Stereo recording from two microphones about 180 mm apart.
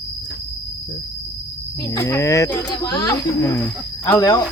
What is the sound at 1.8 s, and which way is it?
Speech, 15° left (ahead or behind).